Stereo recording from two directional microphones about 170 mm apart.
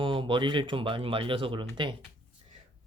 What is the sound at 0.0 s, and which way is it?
Speech, 30° right (ahead or behind).